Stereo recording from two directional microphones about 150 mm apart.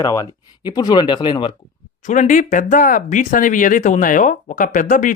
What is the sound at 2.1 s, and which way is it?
Speech, 60° left (ahead or behind).